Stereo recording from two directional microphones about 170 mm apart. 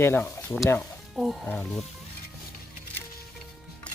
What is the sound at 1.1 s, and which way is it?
Speech, centre (ahead or behind).